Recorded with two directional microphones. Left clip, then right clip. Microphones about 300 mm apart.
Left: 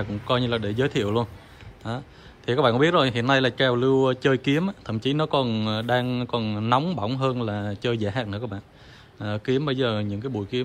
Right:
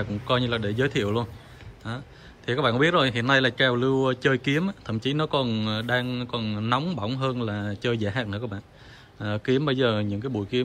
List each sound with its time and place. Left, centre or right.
0.0 s speech: centre